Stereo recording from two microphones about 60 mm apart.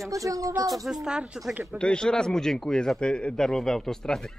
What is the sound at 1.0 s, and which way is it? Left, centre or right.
Speech, centre.